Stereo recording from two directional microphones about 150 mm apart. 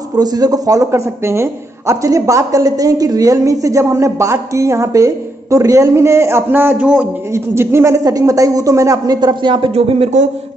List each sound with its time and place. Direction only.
0.2 s speech: 25° right (ahead or behind)